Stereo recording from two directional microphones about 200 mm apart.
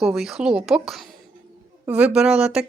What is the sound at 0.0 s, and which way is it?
Speech, centre (ahead or behind).